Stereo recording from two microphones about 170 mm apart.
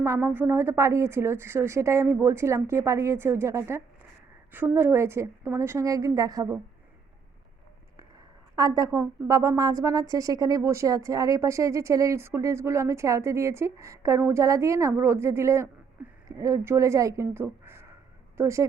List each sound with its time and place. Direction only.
0.0 s a woman's voice: 15° right (ahead or behind)
8.5 s a woman's voice: 20° right (ahead or behind)